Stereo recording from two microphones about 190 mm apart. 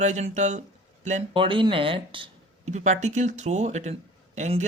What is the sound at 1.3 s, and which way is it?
Speech, 25° right (ahead or behind).